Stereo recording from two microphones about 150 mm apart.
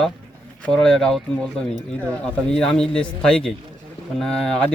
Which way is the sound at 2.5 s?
5° left (ahead or behind).